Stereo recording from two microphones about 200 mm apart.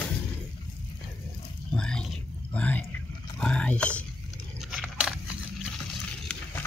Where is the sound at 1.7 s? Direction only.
5° left (ahead or behind).